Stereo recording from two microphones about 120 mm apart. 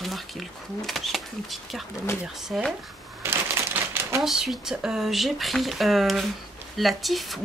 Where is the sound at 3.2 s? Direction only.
20° right (ahead or behind).